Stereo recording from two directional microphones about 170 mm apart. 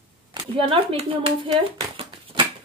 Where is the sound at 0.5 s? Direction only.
35° right (ahead or behind).